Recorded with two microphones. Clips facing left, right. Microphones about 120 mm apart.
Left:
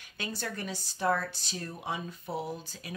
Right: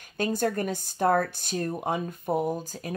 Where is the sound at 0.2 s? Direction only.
45° right (ahead or behind).